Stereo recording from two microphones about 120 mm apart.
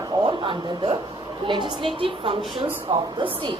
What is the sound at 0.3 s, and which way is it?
A woman's voice, 45° right (ahead or behind).